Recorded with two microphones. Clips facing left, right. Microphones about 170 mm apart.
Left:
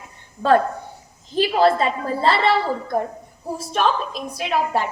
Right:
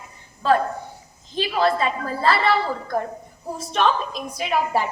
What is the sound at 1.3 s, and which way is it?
A woman's voice, 35° left (ahead or behind).